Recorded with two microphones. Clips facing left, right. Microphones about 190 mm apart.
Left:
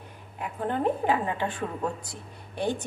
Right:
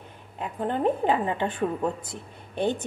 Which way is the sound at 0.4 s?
20° right (ahead or behind).